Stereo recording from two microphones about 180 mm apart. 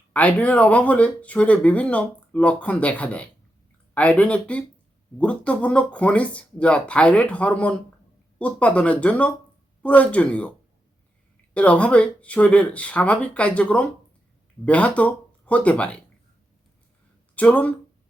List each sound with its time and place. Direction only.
0.1 s speech: 5° left (ahead or behind)
11.5 s speech: 5° left (ahead or behind)
17.3 s speech: 10° left (ahead or behind)